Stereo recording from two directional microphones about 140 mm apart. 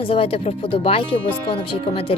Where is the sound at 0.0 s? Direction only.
40° left (ahead or behind).